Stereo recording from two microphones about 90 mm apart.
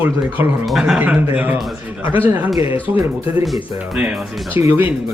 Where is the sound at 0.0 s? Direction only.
20° right (ahead or behind).